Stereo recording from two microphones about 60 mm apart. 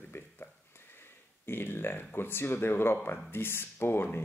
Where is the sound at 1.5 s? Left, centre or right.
Left.